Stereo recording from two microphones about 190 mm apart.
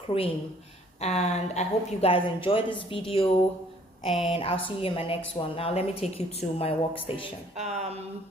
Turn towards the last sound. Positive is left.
turn(degrees=-35)  # may be behind; listen again after turning